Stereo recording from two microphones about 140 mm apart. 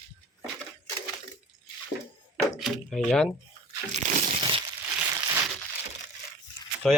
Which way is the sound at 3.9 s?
55° right (ahead or behind).